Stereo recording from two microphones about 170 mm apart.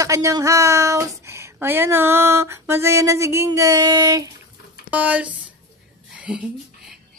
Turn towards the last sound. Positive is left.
turn(degrees=-5)  # may be behind; listen again after turning